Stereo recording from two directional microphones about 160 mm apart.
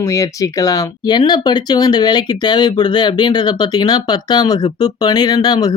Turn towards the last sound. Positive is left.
turn(degrees=25)  # may be behind; listen again after turning